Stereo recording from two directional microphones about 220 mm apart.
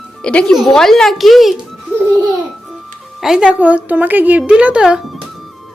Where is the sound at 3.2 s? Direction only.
Centre (ahead or behind).